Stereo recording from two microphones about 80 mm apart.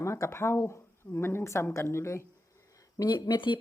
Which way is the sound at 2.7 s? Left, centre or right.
Left.